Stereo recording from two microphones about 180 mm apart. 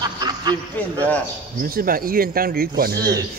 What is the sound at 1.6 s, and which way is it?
Speech, 55° right (ahead or behind).